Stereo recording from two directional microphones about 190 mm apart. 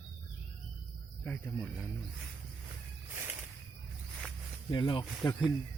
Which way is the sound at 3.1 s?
10° right (ahead or behind).